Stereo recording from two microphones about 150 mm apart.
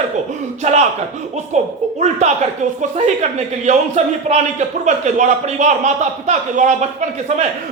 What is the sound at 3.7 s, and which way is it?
A man's voice, 50° right (ahead or behind).